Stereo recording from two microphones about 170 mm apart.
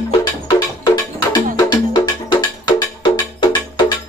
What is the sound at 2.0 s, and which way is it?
Music, 25° left (ahead or behind).